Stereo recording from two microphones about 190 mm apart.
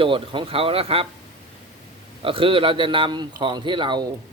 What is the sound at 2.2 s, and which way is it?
A man's voice, 30° right (ahead or behind).